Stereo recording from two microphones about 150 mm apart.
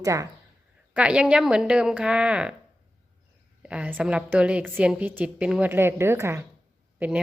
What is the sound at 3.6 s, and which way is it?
A woman's voice, 10° right (ahead or behind).